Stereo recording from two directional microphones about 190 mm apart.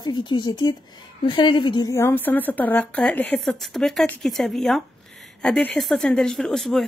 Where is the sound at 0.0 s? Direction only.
25° left (ahead or behind).